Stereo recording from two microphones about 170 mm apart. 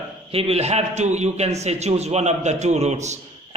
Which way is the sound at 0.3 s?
35° right (ahead or behind).